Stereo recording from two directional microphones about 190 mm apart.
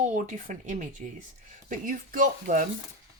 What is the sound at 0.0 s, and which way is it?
Speech, 40° right (ahead or behind).